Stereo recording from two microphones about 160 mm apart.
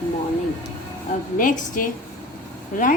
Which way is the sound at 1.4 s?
55° left (ahead or behind).